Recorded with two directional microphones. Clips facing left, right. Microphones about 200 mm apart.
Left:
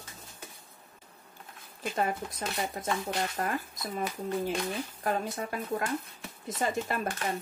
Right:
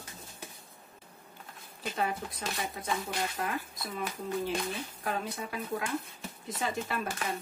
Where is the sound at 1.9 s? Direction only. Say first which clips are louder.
Left 2 dB; 45° left (ahead or behind).